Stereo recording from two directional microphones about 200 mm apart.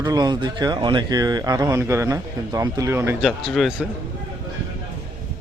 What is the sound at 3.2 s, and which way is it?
Speech, centre (ahead or behind).